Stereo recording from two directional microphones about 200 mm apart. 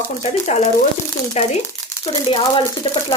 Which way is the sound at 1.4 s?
35° left (ahead or behind).